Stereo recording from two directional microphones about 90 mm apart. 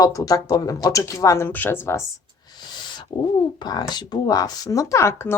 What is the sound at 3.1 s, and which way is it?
Speech, 90° left.